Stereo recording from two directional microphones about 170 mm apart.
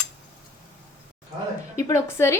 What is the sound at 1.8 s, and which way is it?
Speech, 20° left (ahead or behind).